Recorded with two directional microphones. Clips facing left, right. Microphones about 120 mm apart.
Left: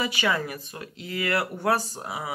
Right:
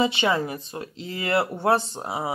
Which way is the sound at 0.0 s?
25° right (ahead or behind).